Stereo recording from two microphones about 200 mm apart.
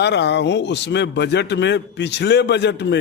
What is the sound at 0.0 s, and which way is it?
A man's voice, 60° left (ahead or behind).